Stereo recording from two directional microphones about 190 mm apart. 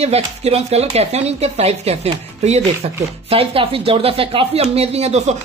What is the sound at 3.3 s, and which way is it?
Speech, 30° right (ahead or behind).